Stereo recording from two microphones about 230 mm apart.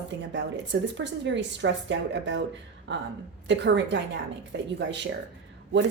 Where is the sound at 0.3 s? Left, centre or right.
Right.